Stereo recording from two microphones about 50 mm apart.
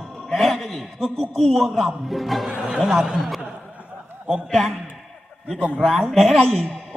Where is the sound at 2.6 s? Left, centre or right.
Centre.